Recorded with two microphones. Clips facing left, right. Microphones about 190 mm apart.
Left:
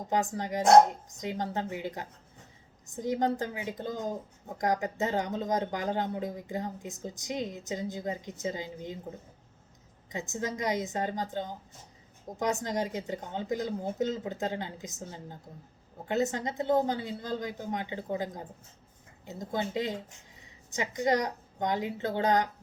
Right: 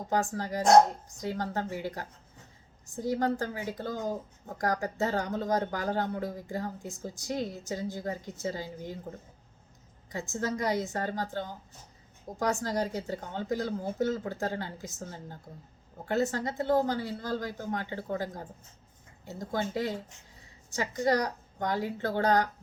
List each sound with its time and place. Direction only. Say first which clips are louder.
0.1 s speech: even; 20° left (ahead or behind)
10.1 s speech: right 2 dB; 20° left (ahead or behind)